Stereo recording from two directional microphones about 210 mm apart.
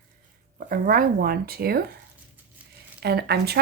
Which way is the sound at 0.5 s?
45° right (ahead or behind).